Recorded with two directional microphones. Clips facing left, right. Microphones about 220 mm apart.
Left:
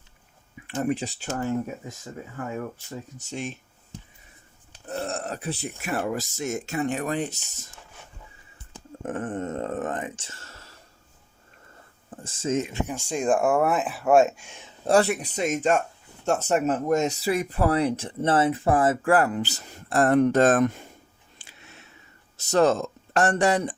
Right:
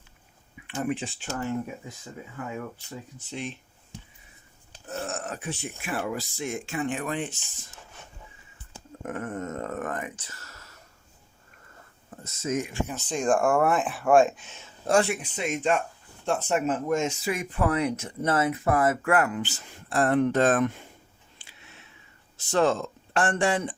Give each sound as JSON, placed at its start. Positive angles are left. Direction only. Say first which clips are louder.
{"t": 0.8, "sound": "speech", "louder": "left 3 dB", "side_deg": 40}
{"t": 4.9, "sound": "speech", "louder": "left 3 dB", "side_deg": 35}
{"t": 9.0, "sound": "speech", "louder": "left 3 dB", "side_deg": 30}
{"t": 12.2, "sound": "speech", "louder": "left 3 dB", "side_deg": 30}
{"t": 14.8, "sound": "speech", "louder": "left 3 dB", "side_deg": 35}
{"t": 21.4, "sound": "a sound", "louder": "left 4 dB", "side_deg": 45}
{"t": 22.4, "sound": "speech", "louder": "left 3 dB", "side_deg": 40}